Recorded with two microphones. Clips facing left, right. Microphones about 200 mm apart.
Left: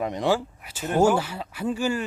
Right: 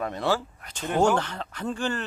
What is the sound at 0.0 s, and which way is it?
Speech, 15° left (ahead or behind).